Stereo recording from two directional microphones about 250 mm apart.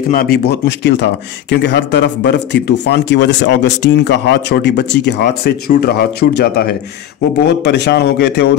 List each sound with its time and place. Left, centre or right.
0.1 s speech: left